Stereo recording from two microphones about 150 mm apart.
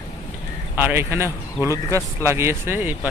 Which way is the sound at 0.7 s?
15° right (ahead or behind).